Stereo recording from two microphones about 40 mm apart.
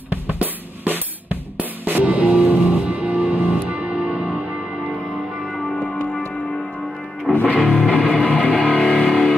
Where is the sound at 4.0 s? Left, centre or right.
Right.